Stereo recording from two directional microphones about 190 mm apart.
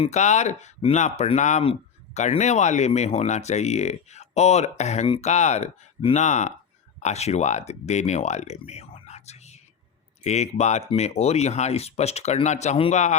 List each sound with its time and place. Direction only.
0.0 s speech: 35° left (ahead or behind)